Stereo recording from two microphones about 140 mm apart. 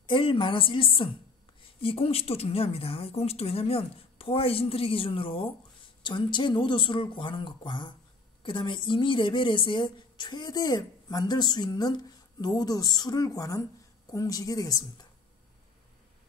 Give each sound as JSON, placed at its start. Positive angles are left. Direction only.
{"t": 0.0, "sound": "a woman's voice", "side_deg": 35}